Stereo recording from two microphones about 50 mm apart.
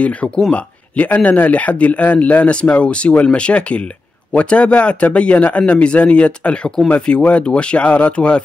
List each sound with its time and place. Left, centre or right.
0.0 s speech: left